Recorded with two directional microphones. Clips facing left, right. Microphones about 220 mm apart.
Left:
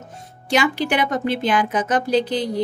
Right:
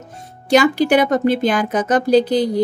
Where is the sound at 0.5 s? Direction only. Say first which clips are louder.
Right 7 dB; 40° right (ahead or behind).